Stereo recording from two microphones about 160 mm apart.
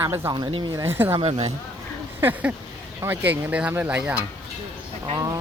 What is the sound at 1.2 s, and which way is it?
Speech, 35° right (ahead or behind).